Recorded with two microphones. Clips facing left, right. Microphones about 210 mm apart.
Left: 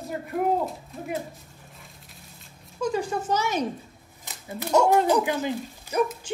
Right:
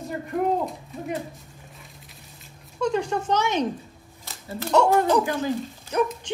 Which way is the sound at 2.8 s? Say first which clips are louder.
Right 2 dB; 5° left (ahead or behind).